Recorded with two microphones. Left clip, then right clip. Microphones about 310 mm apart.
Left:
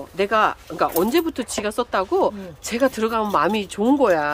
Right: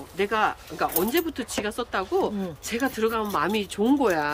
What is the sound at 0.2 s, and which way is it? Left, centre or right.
Speech, centre.